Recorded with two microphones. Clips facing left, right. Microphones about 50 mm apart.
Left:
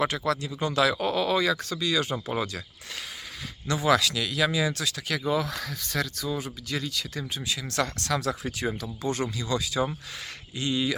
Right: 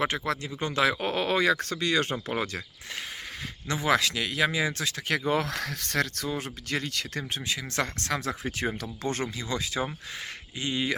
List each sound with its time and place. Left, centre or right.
0.0 s speech: right
3.7 s speech: right